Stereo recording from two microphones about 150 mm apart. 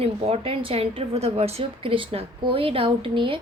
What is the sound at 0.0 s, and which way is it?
A woman's voice, 40° right (ahead or behind).